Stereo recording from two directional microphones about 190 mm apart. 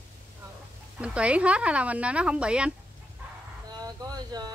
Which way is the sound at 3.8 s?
20° right (ahead or behind).